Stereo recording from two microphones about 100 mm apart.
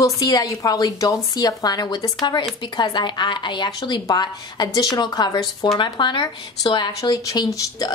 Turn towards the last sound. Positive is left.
turn(degrees=40)  # may be behind; listen again after turning